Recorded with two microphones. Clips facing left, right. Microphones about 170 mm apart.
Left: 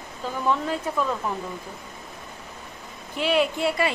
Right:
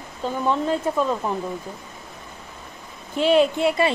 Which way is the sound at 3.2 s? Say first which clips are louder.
Right 5 dB; 20° right (ahead or behind).